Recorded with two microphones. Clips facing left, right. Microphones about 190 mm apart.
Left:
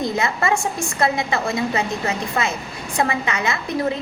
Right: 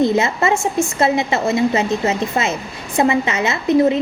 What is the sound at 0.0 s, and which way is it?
A woman's voice, 25° right (ahead or behind).